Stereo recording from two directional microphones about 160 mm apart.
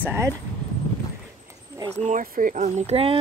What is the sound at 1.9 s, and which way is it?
Speech, 45° right (ahead or behind).